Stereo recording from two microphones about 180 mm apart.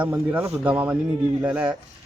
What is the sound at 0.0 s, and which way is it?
A man's voice, 10° right (ahead or behind).